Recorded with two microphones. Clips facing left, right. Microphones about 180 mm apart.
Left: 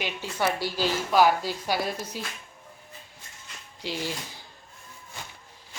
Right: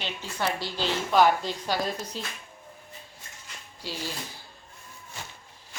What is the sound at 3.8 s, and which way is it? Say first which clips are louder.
Speech: left 3 dB; 15° left (ahead or behind).